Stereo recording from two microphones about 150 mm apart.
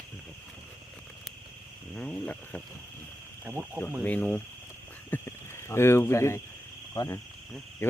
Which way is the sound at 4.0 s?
10° left (ahead or behind).